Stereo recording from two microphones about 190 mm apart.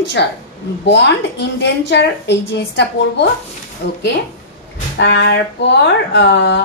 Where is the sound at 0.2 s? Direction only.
65° left (ahead or behind).